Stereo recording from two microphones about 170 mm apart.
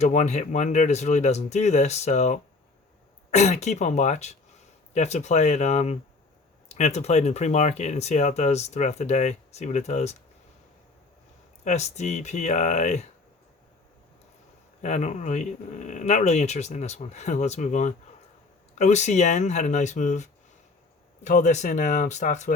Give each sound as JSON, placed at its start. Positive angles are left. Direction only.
{"t": 0.0, "sound": "speech", "side_deg": 45}
{"t": 11.6, "sound": "speech", "side_deg": 40}
{"t": 14.8, "sound": "speech", "side_deg": 45}